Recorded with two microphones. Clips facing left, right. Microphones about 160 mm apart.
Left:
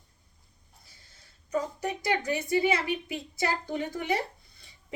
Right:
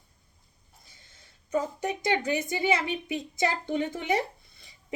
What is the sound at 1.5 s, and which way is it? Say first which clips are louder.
A woman's voice: right 2 dB; 25° right (ahead or behind).